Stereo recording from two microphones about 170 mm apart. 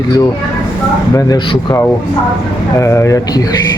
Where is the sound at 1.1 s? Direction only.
20° left (ahead or behind).